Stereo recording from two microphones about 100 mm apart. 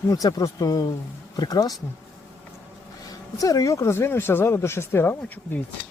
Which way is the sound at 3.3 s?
35° left (ahead or behind).